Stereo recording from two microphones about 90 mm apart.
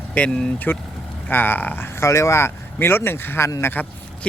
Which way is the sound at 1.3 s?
25° left (ahead or behind).